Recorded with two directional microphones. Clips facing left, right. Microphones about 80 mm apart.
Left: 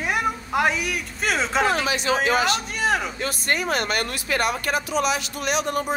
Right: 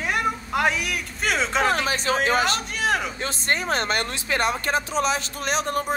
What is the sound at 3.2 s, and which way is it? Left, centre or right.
Speech, right.